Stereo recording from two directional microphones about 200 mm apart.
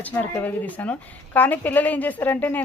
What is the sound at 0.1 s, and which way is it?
A woman's voice, 10° left (ahead or behind).